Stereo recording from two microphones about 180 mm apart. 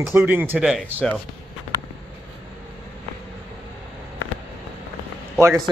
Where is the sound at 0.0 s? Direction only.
10° right (ahead or behind).